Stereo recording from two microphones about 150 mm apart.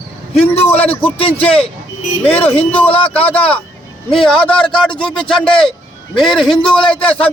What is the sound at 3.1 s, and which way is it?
A man's voice, 10° left (ahead or behind).